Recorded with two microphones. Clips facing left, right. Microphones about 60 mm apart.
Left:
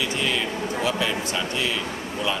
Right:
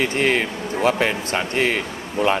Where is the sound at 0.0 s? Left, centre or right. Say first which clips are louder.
Right 6 dB; right.